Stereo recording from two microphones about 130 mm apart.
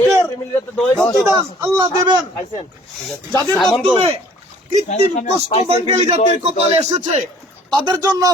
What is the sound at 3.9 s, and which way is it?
Speech, 50° right (ahead or behind).